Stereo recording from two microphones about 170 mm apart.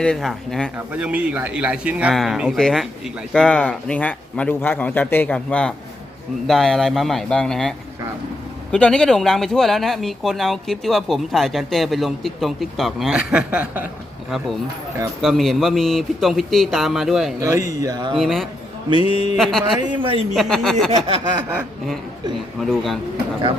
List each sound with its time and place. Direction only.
0.0 s a man's voice: 5° left (ahead or behind)
15.2 s speech: centre (ahead or behind)
17.4 s speech: 20° right (ahead or behind)
18.2 s speech: centre (ahead or behind)
18.9 s mantra: 35° left (ahead or behind)
19.4 s speech: centre (ahead or behind)
19.8 s speech: 25° right (ahead or behind)
20.3 s speech: centre (ahead or behind)
20.9 s a sound: 30° right (ahead or behind)
22.6 s speech: centre (ahead or behind)